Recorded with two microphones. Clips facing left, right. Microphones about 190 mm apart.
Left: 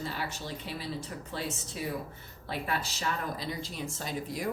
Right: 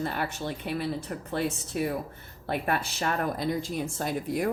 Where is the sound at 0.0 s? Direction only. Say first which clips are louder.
Right 6 dB; 55° right (ahead or behind).